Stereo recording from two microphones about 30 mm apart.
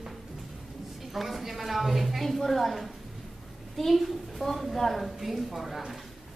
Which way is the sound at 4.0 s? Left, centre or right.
Centre.